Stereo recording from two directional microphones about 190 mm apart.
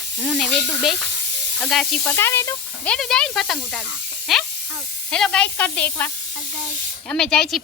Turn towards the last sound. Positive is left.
turn(degrees=5)  # may be behind; listen again after turning